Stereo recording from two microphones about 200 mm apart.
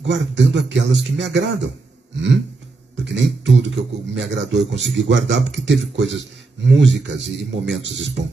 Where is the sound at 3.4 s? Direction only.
65° right (ahead or behind).